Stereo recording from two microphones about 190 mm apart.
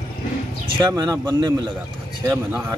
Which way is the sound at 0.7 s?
20° right (ahead or behind).